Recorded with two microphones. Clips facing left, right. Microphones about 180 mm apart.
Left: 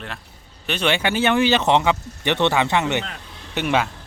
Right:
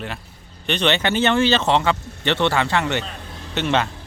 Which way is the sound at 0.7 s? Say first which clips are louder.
Right 1 dB; 10° left (ahead or behind).